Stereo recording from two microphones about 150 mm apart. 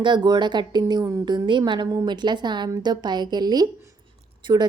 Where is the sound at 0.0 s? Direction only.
30° right (ahead or behind).